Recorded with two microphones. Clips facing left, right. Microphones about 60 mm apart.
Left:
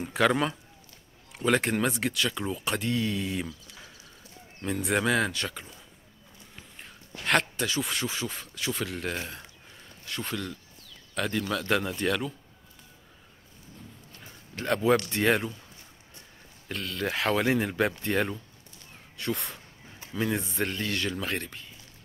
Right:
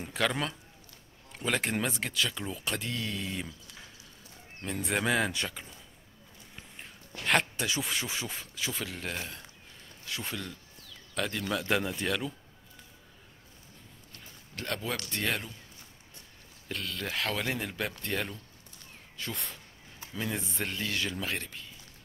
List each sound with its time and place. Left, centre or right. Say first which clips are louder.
0.0 s speech: left 6 dB; centre
4.8 s speech: left 3 dB; centre
6.8 s a sound: left 1 dB; centre
7.8 s speech: left 3 dB; centre
11.5 s speech: even; centre
14.5 s speech: left 7 dB; centre
15.1 s speech: left 8 dB; left
16.6 s speech: left 5 dB; centre
17.1 s speech: left 8 dB; centre
19.1 s speech: left 7 dB; centre